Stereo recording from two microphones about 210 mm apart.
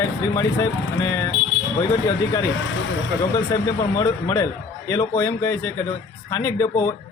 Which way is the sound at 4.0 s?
15° left (ahead or behind).